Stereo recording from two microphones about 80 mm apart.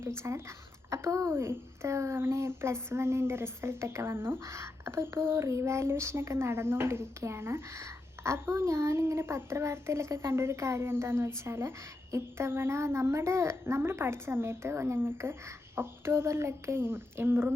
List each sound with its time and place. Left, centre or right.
0.0 s a woman's voice: right